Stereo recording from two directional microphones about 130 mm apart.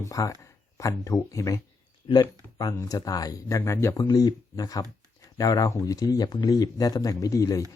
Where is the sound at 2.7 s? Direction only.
25° left (ahead or behind).